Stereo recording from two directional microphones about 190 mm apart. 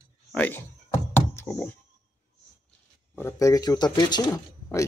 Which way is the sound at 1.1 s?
15° left (ahead or behind).